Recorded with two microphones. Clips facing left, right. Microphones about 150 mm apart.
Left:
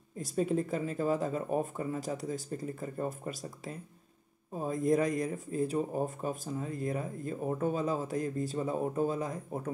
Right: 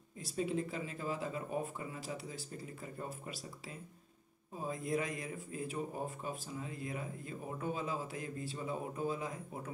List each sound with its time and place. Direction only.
0.2 s speech: 45° left (ahead or behind)